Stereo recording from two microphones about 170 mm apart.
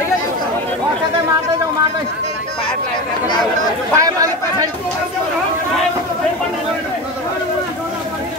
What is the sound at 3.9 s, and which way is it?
Chatter, 20° right (ahead or behind).